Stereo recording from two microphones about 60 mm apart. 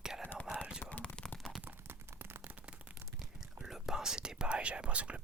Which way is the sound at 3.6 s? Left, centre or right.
Centre.